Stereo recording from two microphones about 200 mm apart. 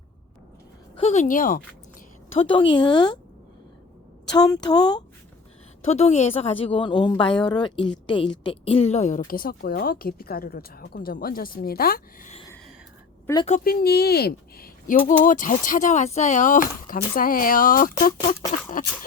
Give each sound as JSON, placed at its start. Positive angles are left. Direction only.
{"t": 0.9, "sound": "a woman's voice", "side_deg": 35}
{"t": 2.4, "sound": "a woman's voice", "side_deg": 25}
{"t": 4.3, "sound": "a woman's voice", "side_deg": 20}
{"t": 5.9, "sound": "a woman's voice", "side_deg": 35}
{"t": 13.2, "sound": "a woman's voice", "side_deg": 20}
{"t": 13.5, "sound": "speech", "side_deg": 50}